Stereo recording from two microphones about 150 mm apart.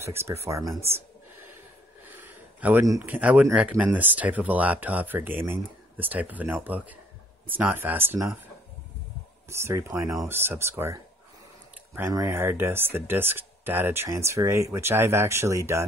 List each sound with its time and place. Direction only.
0.0 s speech: 15° right (ahead or behind)
2.0 s a sound: 15° right (ahead or behind)
3.5 s speech: 10° right (ahead or behind)
9.5 s speech: 15° right (ahead or behind)